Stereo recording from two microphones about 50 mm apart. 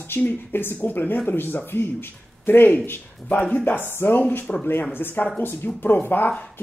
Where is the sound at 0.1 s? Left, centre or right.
Left.